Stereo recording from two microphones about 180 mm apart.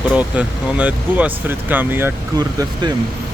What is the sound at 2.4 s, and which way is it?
Speech, 20° right (ahead or behind).